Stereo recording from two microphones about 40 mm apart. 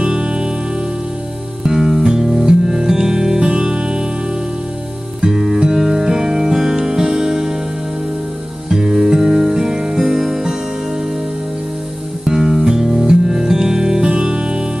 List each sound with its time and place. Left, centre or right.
0.0 s music: right
1.6 s music: centre
5.2 s music: centre
8.6 s music: centre
12.3 s music: centre